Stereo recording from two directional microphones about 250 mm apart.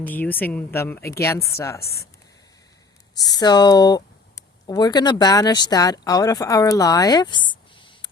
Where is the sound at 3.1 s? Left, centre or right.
Centre.